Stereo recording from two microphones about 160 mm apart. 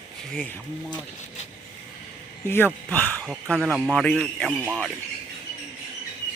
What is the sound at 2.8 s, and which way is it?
Speech, 10° left (ahead or behind).